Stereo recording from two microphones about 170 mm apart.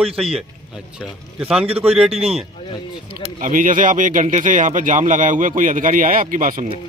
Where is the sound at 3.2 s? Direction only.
50° right (ahead or behind).